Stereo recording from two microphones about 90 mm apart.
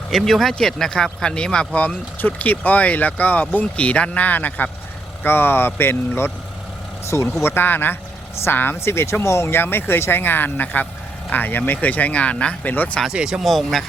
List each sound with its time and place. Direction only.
0.1 s speech: centre (ahead or behind); by 6.3 s 25° left (ahead or behind)
7.4 s speech: 25° left (ahead or behind)
13.1 s speech: 10° right (ahead or behind)